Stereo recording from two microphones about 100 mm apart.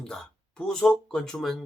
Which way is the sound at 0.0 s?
5° left (ahead or behind).